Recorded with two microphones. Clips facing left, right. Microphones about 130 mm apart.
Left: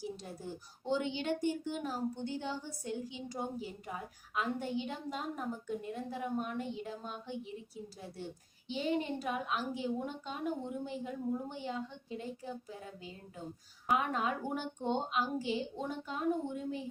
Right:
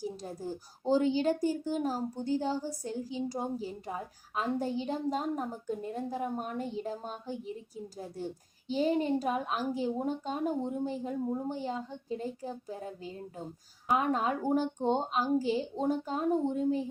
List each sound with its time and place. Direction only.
0.0 s speech: 40° right (ahead or behind)